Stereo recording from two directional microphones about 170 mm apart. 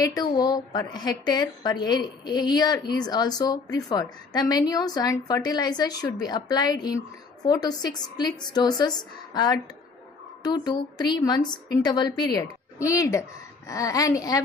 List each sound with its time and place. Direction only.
0.0 s a woman's voice: 20° left (ahead or behind)